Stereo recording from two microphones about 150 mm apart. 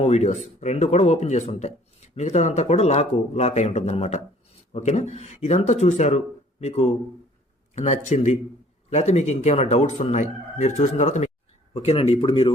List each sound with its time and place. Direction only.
0.0 s speech: 45° left (ahead or behind)